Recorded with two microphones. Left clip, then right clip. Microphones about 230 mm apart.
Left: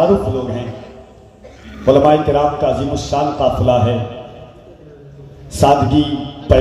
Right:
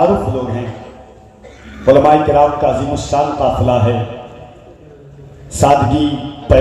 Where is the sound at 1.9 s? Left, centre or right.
Left.